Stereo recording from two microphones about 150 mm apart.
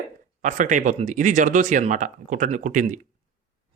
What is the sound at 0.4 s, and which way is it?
Speech, 55° right (ahead or behind).